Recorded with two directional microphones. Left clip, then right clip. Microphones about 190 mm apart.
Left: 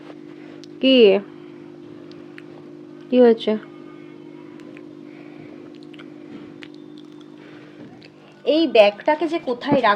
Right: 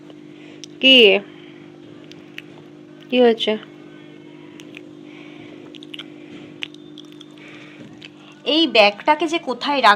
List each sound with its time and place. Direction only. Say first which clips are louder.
0.8 s a woman's voice: right 3 dB; 20° left (ahead or behind)
3.1 s a woman's voice: left 1 dB; 15° left (ahead or behind)
8.4 s a woman's voice: even; 5° left (ahead or behind)